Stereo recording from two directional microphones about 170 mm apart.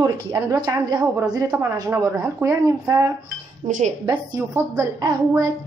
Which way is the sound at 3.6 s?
45° right (ahead or behind).